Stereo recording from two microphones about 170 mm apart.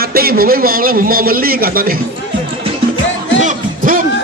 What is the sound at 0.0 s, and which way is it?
A man's voice, 60° right (ahead or behind).